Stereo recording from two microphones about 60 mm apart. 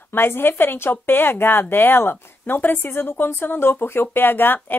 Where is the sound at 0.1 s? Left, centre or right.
Left.